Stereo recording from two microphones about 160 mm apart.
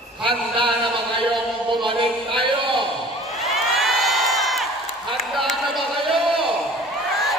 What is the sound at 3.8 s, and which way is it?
Crowd, centre (ahead or behind).